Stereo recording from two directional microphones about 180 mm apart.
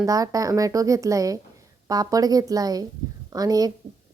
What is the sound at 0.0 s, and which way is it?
A woman's voice, 20° right (ahead or behind).